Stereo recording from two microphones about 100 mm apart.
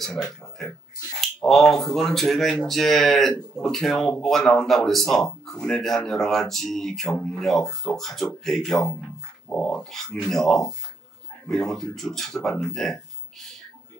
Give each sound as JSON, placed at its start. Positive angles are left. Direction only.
{"t": 0.0, "sound": "speech", "side_deg": 0}